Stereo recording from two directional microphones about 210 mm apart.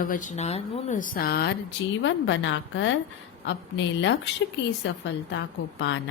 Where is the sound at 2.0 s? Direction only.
60° left (ahead or behind).